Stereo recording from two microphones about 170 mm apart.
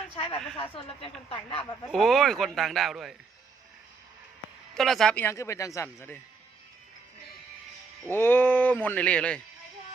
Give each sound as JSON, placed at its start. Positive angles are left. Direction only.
{"t": 0.2, "sound": "speech", "side_deg": 35}
{"t": 1.9, "sound": "a man's voice", "side_deg": 0}
{"t": 4.7, "sound": "speech", "side_deg": 0}
{"t": 8.1, "sound": "speech", "side_deg": 10}